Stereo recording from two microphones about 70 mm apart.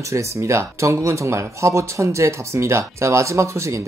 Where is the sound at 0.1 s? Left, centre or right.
Right.